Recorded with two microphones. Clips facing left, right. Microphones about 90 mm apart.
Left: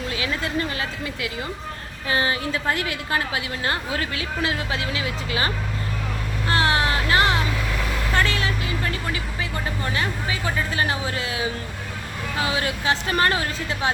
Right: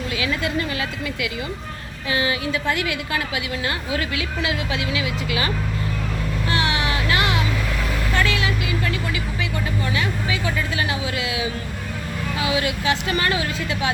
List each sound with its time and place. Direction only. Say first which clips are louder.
0.1 s a woman's voice: right 3 dB; 35° left (ahead or behind)
6.5 s a sound: left 3 dB; 40° left (ahead or behind)
8.1 s vehicle: right 1 dB; 35° left (ahead or behind)
9.8 s a woman's voice: even; 35° left (ahead or behind)